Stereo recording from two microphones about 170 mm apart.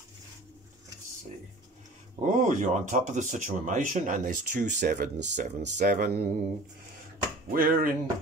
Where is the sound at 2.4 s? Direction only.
45° right (ahead or behind).